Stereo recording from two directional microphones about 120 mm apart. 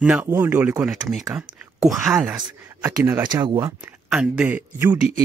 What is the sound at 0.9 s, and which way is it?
Speech, 5° right (ahead or behind).